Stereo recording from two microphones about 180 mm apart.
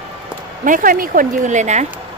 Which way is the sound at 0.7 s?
50° right (ahead or behind).